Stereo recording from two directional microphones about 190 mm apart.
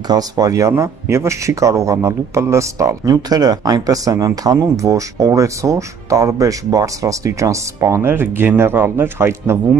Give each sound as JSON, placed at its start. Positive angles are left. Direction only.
{"t": 0.1, "sound": "speech", "side_deg": -20}